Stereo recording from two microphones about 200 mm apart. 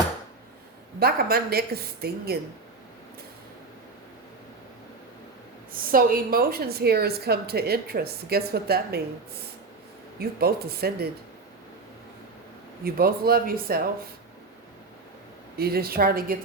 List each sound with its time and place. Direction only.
0.9 s a woman's voice: 50° right (ahead or behind)
5.7 s a woman's voice: 45° right (ahead or behind)
10.2 s a woman's voice: 50° right (ahead or behind)
12.8 s a woman's voice: 50° right (ahead or behind)
15.5 s a woman's voice: 50° right (ahead or behind)